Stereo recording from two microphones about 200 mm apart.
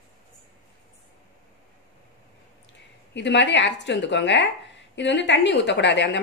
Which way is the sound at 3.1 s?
60° left (ahead or behind).